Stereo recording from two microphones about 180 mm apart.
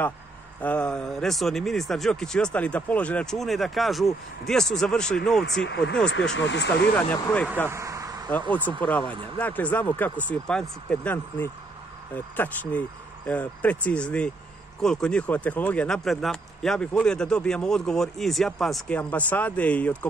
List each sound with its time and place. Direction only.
0.6 s speech: 5° left (ahead or behind)
5.6 s speech: 75° left (ahead or behind)
7.0 s speech: 10° left (ahead or behind)
7.7 s a sound: 15° right (ahead or behind)
8.3 s speech: 10° left (ahead or behind)
13.3 s speech: 10° left (ahead or behind)